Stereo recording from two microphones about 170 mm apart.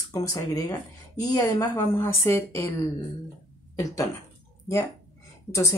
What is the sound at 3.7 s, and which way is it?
Speech, 20° left (ahead or behind).